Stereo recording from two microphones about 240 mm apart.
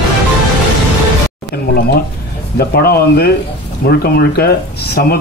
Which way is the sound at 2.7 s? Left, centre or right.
Left.